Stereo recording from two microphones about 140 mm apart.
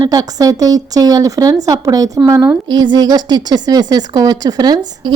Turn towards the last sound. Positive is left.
turn(degrees=-30)  # may be behind; listen again after turning